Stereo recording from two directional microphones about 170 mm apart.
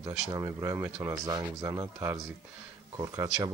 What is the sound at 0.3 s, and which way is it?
Speech, 20° right (ahead or behind).